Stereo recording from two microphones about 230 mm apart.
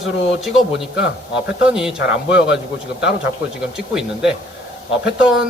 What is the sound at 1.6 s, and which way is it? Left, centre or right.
Speech, centre.